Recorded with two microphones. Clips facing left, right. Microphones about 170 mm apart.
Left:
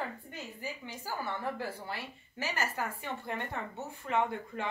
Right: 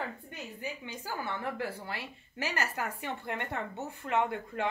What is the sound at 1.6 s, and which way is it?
A woman's voice, 65° right (ahead or behind).